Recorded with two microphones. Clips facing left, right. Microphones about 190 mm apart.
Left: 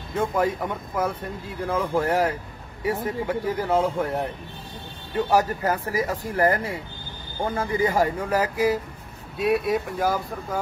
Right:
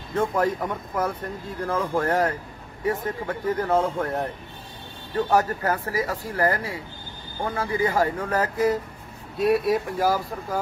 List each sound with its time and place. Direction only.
0.1 s speech: centre (ahead or behind)
5.3 s speech: 15° left (ahead or behind)